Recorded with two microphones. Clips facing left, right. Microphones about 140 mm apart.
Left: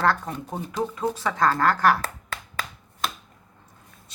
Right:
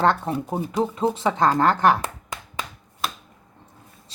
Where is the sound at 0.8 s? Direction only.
25° right (ahead or behind).